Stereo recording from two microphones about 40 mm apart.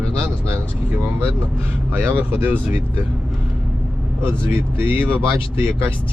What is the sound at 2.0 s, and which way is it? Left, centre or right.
Speech, right.